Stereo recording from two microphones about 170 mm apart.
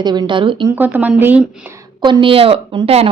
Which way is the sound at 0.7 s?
10° right (ahead or behind).